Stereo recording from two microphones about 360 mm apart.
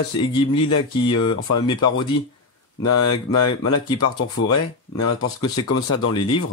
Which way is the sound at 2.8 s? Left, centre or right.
Left.